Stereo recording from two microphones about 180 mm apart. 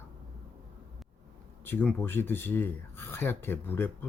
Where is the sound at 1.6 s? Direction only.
10° left (ahead or behind).